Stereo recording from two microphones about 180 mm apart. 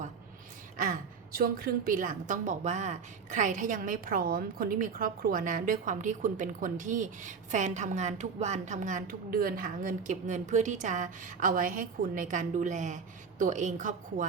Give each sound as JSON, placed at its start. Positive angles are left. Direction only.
{"t": 0.8, "sound": "a woman's voice", "side_deg": -50}